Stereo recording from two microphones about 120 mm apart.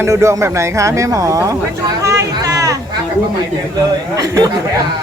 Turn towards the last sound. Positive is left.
turn(degrees=-30)  # may be behind; listen again after turning